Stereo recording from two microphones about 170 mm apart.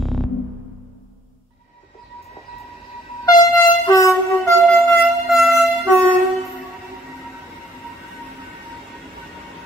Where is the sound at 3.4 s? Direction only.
20° left (ahead or behind).